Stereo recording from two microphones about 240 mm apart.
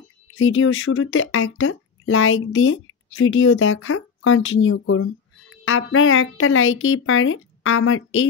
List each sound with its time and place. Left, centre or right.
0.4 s a woman's voice: left